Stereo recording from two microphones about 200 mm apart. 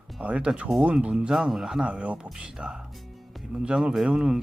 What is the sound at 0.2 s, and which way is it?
Speech, 5° right (ahead or behind).